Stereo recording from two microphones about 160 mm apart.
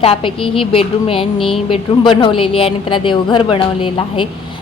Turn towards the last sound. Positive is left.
turn(degrees=35)  # may be behind; listen again after turning